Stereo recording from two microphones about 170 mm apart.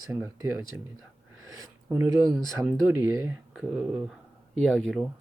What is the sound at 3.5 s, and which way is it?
Speech, 5° right (ahead or behind).